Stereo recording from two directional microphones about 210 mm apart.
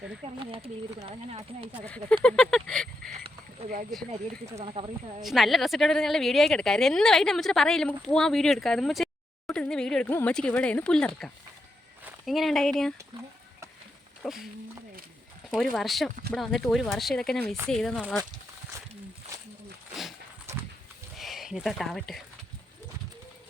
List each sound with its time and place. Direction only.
0.3 s speech: 25° right (ahead or behind)
1.8 s speech: 5° left (ahead or behind)
3.1 s a sound: 30° right (ahead or behind)
4.5 s speech: 25° right (ahead or behind)
5.2 s speech: centre (ahead or behind)
14.2 s speech: centre (ahead or behind)
15.7 s speech: centre (ahead or behind)
21.2 s speech: centre (ahead or behind)